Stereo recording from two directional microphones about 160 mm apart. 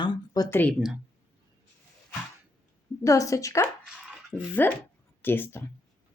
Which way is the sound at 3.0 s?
20° left (ahead or behind).